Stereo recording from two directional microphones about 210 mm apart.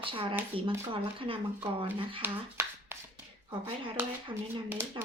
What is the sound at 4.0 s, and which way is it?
Speech, 10° right (ahead or behind).